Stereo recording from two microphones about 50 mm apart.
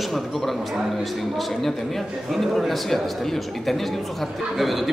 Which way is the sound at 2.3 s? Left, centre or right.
Centre.